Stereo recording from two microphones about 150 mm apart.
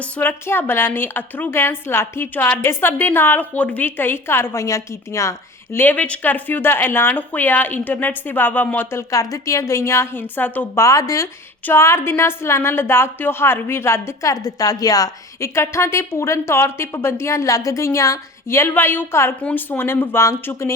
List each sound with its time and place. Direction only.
0.0 s speech: 15° left (ahead or behind)